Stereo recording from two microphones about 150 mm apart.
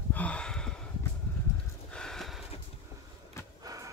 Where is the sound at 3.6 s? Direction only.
20° right (ahead or behind).